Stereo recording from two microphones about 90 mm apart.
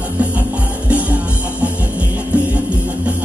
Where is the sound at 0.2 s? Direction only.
15° right (ahead or behind).